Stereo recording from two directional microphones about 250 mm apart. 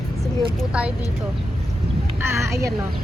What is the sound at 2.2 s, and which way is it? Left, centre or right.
Speech, centre.